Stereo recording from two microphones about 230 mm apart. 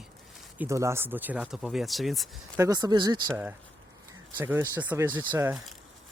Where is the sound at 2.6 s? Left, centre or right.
Centre.